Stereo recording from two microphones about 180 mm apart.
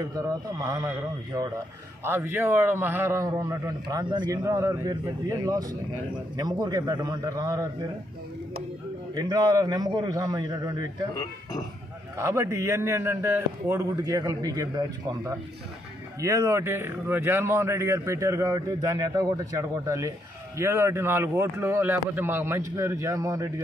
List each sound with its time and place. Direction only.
0.0 s a man's voice: 20° right (ahead or behind)
9.1 s a man's voice: 20° right (ahead or behind)
12.2 s a man's voice: 15° right (ahead or behind)